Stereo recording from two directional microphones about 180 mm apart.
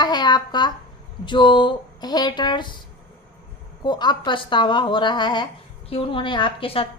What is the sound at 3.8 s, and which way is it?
A woman's voice, 25° left (ahead or behind).